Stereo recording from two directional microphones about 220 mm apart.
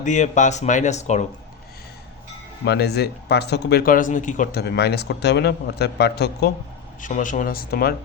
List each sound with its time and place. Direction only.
0.0 s speech: 35° left (ahead or behind)
2.6 s speech: 50° left (ahead or behind)
7.0 s speech: 35° left (ahead or behind)